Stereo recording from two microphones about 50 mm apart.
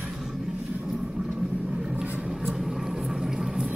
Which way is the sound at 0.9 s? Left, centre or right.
Centre.